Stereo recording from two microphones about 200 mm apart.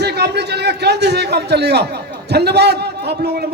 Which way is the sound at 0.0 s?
55° right (ahead or behind).